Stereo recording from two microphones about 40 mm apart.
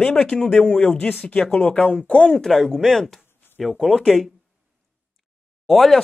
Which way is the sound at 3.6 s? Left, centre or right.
Centre.